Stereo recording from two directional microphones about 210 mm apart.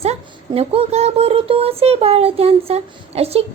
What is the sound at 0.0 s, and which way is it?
Speech, 30° right (ahead or behind).